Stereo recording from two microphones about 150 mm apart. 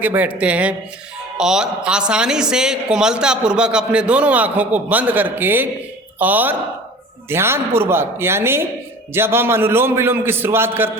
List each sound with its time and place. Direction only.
0.0 s a man's voice: 10° right (ahead or behind)